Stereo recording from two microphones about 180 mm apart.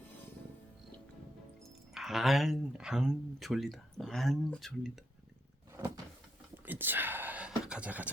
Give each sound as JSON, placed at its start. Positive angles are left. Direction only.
{"t": 1.9, "sound": "speech", "side_deg": 0}
{"t": 6.7, "sound": "whispering", "side_deg": -10}